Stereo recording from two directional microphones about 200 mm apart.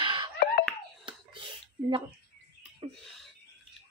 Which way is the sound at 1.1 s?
25° right (ahead or behind).